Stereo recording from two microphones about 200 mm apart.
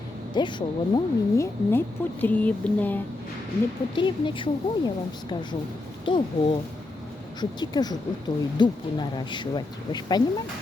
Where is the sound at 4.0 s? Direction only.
25° left (ahead or behind).